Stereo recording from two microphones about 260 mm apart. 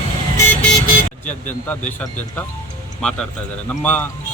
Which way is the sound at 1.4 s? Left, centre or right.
Centre.